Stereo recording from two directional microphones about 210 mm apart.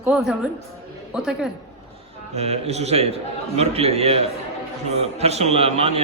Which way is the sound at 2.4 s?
30° right (ahead or behind).